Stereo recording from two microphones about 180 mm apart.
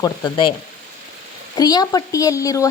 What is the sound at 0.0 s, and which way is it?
Speech, 25° left (ahead or behind).